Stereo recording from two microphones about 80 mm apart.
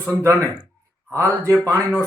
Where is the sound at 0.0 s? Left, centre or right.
Right.